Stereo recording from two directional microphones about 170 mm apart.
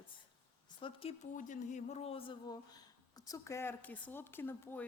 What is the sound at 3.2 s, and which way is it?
Speech, 20° left (ahead or behind).